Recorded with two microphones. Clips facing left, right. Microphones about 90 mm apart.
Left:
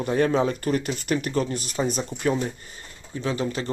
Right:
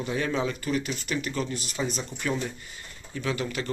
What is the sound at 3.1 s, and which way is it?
Speech, 30° left (ahead or behind).